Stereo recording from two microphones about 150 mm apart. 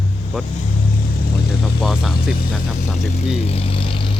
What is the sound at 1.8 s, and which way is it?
Speech, 5° right (ahead or behind).